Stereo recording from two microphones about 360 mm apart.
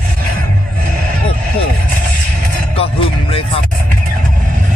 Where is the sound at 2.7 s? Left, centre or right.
Centre.